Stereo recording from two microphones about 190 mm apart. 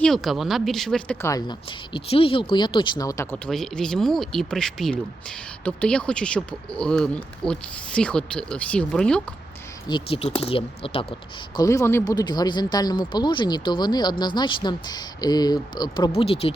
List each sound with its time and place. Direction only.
0.0 s speech: centre (ahead or behind)
1.3 s speech: 25° left (ahead or behind)
3.3 s speech: 5° left (ahead or behind)
9.9 s speech: 30° left (ahead or behind)
11.5 s speech: 15° left (ahead or behind)